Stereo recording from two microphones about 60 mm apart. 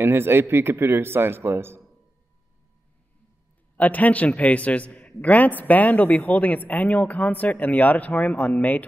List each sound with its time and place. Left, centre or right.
0.0 s speech: right
3.7 s a man's voice: left